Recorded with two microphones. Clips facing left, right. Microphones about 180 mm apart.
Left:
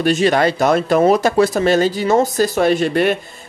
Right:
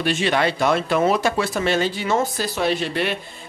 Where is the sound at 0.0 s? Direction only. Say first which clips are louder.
Left 6 dB; 40° left (ahead or behind).